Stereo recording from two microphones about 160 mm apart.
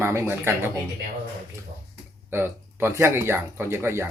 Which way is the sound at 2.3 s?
15° right (ahead or behind).